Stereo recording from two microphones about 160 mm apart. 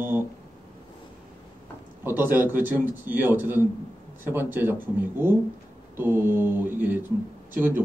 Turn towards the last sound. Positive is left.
turn(degrees=-10)  # may be behind; listen again after turning